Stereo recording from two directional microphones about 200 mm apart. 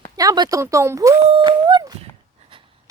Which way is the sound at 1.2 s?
25° right (ahead or behind).